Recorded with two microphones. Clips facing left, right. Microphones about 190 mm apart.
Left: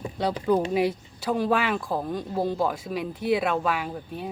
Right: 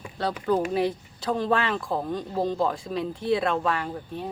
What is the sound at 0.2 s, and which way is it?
A woman's voice, 15° left (ahead or behind).